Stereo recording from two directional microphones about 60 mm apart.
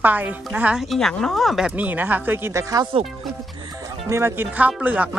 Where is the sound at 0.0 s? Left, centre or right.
Right.